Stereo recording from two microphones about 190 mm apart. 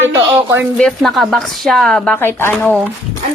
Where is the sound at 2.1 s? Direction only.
10° left (ahead or behind).